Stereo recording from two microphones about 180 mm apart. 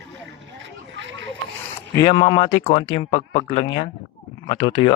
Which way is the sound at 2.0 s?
25° left (ahead or behind).